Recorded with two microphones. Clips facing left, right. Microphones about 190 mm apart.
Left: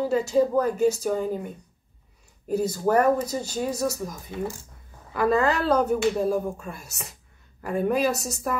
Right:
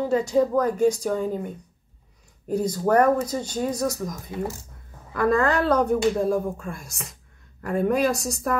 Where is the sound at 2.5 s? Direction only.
5° left (ahead or behind).